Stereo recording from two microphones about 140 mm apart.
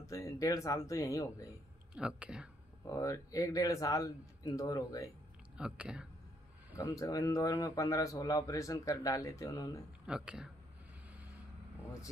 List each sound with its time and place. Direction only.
0.0 s speech: 20° left (ahead or behind)
2.0 s speech: 5° right (ahead or behind)
2.9 s speech: 25° left (ahead or behind)
5.6 s speech: 5° right (ahead or behind)
6.8 s speech: 20° left (ahead or behind)
10.0 s speech: 5° right (ahead or behind)